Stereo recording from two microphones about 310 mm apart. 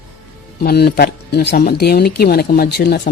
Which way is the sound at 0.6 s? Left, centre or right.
Left.